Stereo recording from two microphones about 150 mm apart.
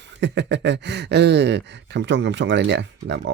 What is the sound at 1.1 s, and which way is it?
Gasp, 90° right.